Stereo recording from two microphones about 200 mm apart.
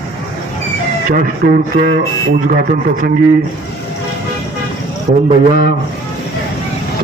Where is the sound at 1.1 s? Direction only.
45° right (ahead or behind).